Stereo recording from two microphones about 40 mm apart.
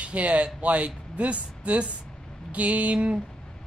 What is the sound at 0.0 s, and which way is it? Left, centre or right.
Speech, right.